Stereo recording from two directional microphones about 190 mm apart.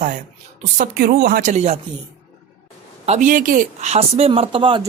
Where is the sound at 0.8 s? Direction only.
50° right (ahead or behind).